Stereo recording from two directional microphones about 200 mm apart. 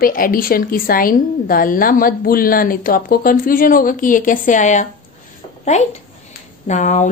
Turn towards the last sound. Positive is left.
turn(degrees=35)  # may be behind; listen again after turning